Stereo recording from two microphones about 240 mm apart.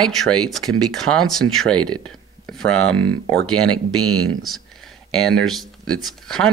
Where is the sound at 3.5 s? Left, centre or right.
Right.